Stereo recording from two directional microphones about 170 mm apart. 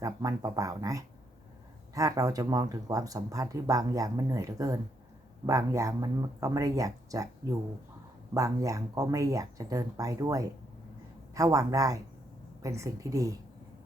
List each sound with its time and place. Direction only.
0.0 s speech: 20° right (ahead or behind)
8.3 s speech: 20° right (ahead or behind)